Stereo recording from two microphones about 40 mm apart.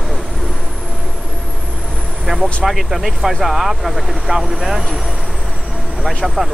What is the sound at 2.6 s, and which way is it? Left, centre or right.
Speech, centre.